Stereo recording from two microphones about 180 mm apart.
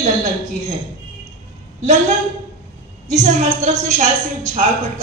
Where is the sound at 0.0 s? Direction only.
40° right (ahead or behind).